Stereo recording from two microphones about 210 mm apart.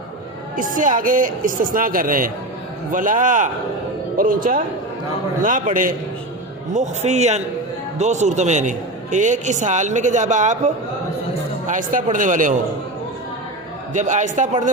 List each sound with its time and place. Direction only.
0.5 s a man's voice: 40° right (ahead or behind)
13.9 s a man's voice: 35° right (ahead or behind)